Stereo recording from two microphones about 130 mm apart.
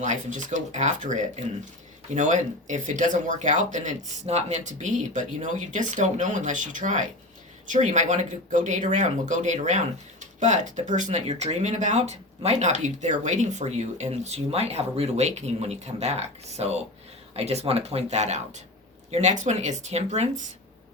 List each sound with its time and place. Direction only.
0.0 s speech: 75° right (ahead or behind)